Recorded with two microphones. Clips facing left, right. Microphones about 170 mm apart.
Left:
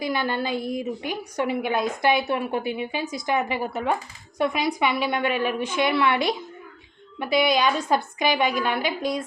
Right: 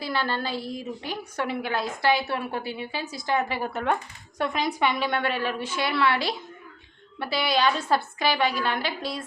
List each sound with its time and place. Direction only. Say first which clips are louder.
0.0 s a woman's voice: left 3 dB; 15° left (ahead or behind)